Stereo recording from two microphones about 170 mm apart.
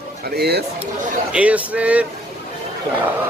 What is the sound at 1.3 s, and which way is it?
Speech, 10° right (ahead or behind).